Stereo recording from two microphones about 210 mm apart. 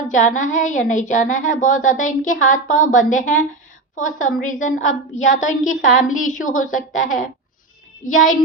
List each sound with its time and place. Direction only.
0.1 s a woman's voice: 35° left (ahead or behind)